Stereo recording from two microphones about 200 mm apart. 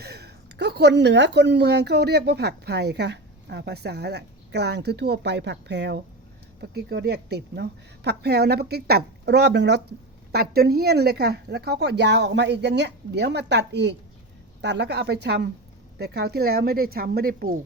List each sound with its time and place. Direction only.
0.0 s speech: 55° right (ahead or behind)